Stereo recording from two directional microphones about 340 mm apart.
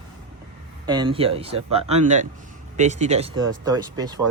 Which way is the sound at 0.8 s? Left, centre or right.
Centre.